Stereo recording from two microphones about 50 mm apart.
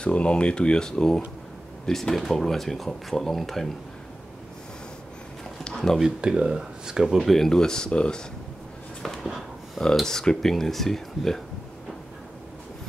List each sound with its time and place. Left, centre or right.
0.0 s speech: left; by 3.7 s centre
5.6 s a sound: centre
5.9 s speech: centre
7.2 s speech: centre
10.0 s speech: centre